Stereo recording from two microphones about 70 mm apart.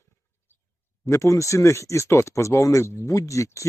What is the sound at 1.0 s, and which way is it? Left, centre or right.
Speech, left.